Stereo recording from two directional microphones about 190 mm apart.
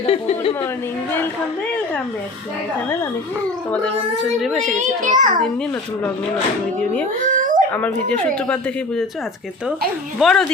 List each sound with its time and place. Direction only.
0.0 s a woman's voice: 30° left (ahead or behind)
3.7 s a child's voice: 5° left (ahead or behind)
4.8 s a child's voice: 40° right (ahead or behind)
7.3 s a sound: 45° right (ahead or behind)
7.7 s a child's voice: 10° left (ahead or behind)
10.2 s a child's voice: centre (ahead or behind)